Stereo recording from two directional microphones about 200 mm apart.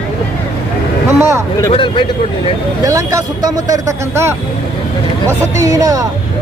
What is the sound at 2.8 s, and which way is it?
Speech, 15° right (ahead or behind).